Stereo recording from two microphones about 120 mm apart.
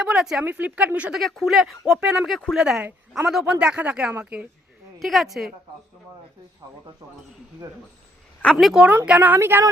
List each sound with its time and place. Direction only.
0.0 s speech: 5° right (ahead or behind)
1.2 s speech: 5° left (ahead or behind)
4.9 s speech: centre (ahead or behind)
8.6 s speech: 5° right (ahead or behind)